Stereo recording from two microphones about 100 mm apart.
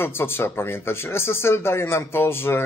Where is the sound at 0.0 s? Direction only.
25° left (ahead or behind).